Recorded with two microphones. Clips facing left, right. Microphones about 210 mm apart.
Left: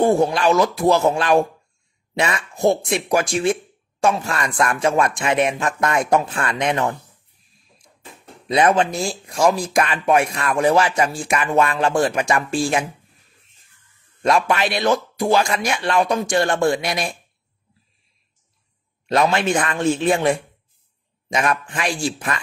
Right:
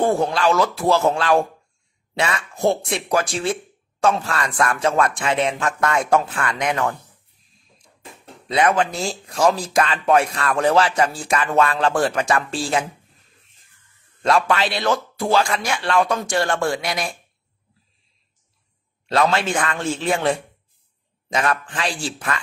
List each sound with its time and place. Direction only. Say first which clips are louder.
0.0 s speech: left 2 dB; 15° left (ahead or behind)
8.5 s speech: left 2 dB; 25° left (ahead or behind)
8.9 s speech: left 1 dB; 10° left (ahead or behind)
14.2 s speech: left 1 dB; 15° left (ahead or behind)
19.0 s speech: left 1 dB; 15° left (ahead or behind)